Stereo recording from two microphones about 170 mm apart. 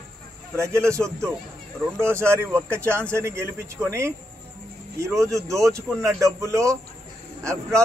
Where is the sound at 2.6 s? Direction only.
15° right (ahead or behind).